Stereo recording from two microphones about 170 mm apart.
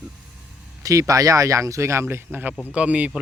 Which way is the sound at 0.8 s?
20° right (ahead or behind).